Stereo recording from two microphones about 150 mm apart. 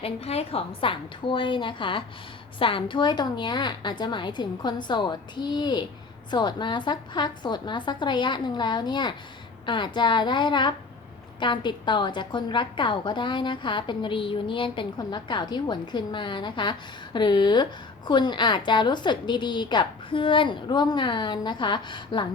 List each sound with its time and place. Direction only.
0.0 s a woman's voice: 45° left (ahead or behind)